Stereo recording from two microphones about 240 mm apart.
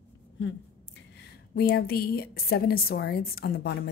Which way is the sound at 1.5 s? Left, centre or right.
Left.